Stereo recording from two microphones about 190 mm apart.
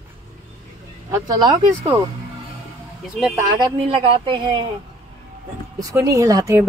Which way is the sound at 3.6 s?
25° right (ahead or behind).